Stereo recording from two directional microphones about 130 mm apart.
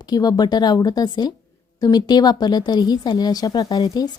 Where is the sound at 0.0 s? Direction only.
30° left (ahead or behind).